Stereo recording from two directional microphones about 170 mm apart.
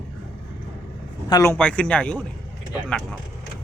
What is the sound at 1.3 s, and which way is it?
Speech, 15° left (ahead or behind).